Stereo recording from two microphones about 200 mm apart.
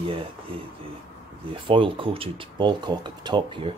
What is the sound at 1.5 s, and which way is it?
Speech, 25° right (ahead or behind).